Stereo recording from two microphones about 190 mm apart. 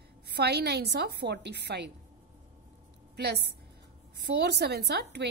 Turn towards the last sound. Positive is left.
turn(degrees=-60)  # may be behind; listen again after turning